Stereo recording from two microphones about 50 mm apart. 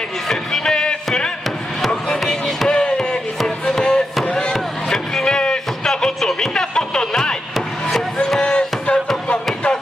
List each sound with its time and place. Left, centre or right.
0.3 s music: centre
2.0 s basketball bounce: centre
2.8 s chop: centre
8.4 s music: centre